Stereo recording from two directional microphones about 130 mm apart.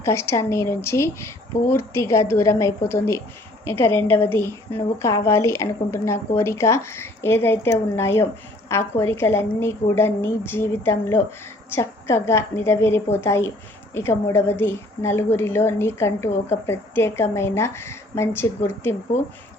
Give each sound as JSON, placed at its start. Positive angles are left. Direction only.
{"t": 0.0, "sound": "a woman's voice", "side_deg": 20}